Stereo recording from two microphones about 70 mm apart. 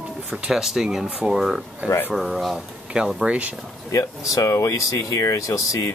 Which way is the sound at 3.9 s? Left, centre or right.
Left.